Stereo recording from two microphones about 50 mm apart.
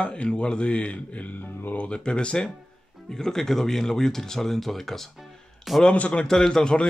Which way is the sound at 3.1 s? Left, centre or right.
Centre.